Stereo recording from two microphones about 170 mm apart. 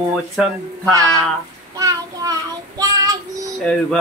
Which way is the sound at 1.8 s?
20° right (ahead or behind).